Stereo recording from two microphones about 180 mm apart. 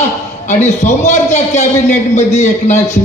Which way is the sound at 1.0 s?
40° left (ahead or behind).